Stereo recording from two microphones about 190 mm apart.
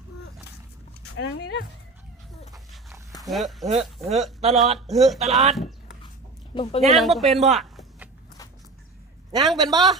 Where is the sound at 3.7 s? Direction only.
35° right (ahead or behind).